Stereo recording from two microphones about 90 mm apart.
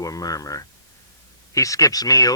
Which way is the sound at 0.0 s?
40° left (ahead or behind).